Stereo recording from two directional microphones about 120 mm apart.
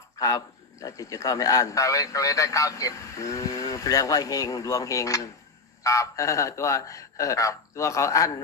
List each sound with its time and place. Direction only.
0.2 s a man's voice: 30° left (ahead or behind)